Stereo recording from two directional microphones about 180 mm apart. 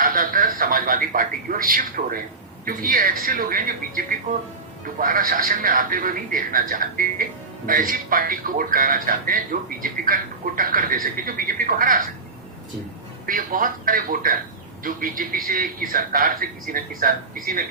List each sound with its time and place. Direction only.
0.0 s speech: 50° right (ahead or behind)
13.2 s speech: 50° right (ahead or behind)